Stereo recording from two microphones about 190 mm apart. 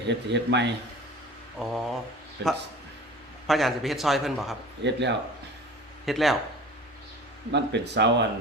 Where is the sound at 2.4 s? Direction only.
65° right (ahead or behind).